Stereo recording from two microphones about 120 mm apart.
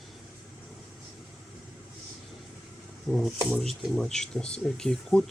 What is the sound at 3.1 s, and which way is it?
Speech, centre (ahead or behind).